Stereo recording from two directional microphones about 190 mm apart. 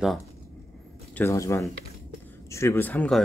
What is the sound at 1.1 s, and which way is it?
Speech, 15° left (ahead or behind).